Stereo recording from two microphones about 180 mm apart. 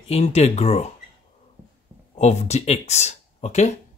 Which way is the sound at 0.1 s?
35° left (ahead or behind).